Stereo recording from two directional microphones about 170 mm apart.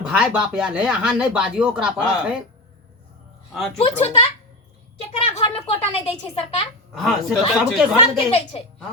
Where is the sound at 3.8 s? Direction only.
35° left (ahead or behind).